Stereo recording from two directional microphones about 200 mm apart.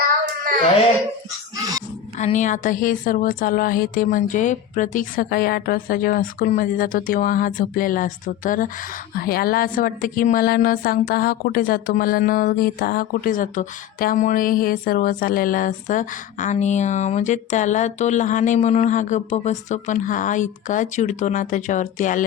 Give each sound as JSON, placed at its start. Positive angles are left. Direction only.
{"t": 2.1, "sound": "speech", "side_deg": 35}